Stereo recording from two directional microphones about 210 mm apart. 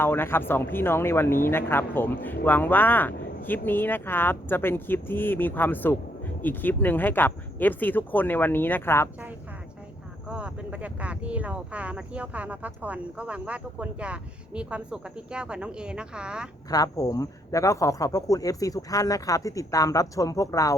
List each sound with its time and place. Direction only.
0.0 s speech: 10° left (ahead or behind)
10.2 s speech: 5° right (ahead or behind)
16.6 s speech: 15° left (ahead or behind)